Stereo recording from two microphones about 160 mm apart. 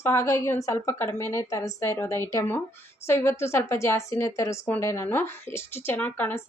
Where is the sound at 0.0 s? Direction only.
15° left (ahead or behind).